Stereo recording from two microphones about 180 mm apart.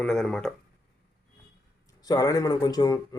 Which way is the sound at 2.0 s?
20° left (ahead or behind).